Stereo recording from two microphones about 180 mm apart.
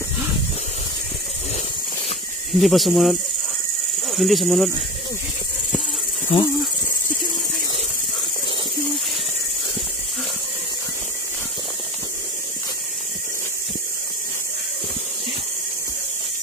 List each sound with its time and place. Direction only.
2.6 s speech: centre (ahead or behind)
6.3 s cricket: 30° left (ahead or behind)